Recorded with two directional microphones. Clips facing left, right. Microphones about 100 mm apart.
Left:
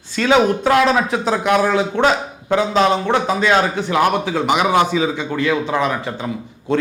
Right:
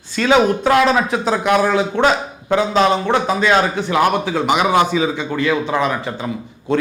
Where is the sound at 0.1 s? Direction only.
10° right (ahead or behind).